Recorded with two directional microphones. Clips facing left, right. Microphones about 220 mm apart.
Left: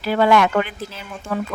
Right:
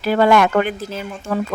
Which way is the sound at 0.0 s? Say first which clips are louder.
Right 2 dB; 45° right (ahead or behind).